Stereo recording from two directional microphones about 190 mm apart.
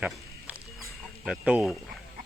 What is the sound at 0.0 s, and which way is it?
Wild animals, 5° right (ahead or behind).